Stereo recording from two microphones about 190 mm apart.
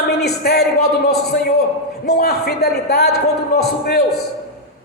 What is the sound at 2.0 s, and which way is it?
A man's voice, 55° left (ahead or behind).